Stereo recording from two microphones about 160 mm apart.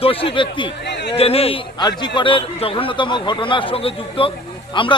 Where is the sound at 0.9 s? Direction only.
90° left.